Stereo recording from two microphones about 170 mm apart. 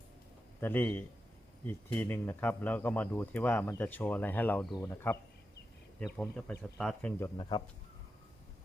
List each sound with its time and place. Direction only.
0.6 s speech: 10° left (ahead or behind)
6.1 s speech: 10° left (ahead or behind)
7.2 s speech: 25° left (ahead or behind)